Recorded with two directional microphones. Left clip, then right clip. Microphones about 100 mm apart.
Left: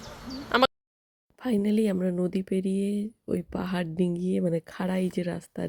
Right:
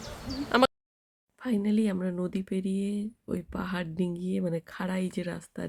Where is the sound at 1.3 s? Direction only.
40° left (ahead or behind).